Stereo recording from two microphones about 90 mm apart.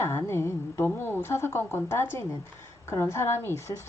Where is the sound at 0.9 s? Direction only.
25° left (ahead or behind).